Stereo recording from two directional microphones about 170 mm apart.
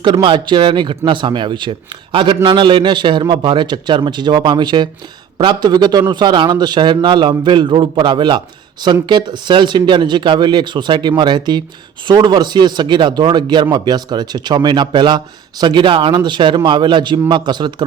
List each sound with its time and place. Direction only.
0.0 s speech: 30° right (ahead or behind)